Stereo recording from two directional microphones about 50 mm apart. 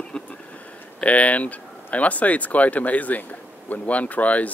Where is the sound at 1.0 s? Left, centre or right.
Left.